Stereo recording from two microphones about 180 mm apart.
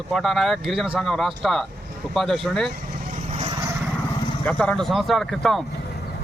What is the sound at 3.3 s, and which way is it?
Vehicle, 30° right (ahead or behind).